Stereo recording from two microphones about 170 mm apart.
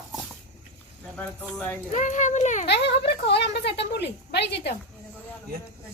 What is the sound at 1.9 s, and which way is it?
Speech, 45° left (ahead or behind).